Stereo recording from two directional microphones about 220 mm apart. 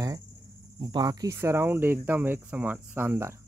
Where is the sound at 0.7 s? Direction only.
20° right (ahead or behind).